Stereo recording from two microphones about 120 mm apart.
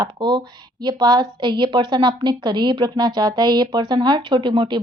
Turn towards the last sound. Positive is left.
turn(degrees=-40)  # may be behind; listen again after turning